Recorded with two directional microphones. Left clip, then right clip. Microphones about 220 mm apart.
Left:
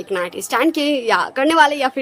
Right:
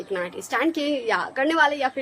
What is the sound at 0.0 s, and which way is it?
A woman's voice, 50° left (ahead or behind).